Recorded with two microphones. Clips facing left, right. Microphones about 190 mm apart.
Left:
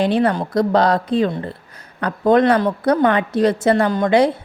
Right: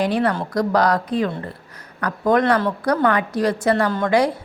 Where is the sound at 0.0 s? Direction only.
25° left (ahead or behind).